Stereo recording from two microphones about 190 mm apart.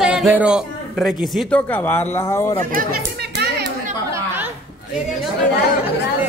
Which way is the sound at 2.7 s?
50° right (ahead or behind).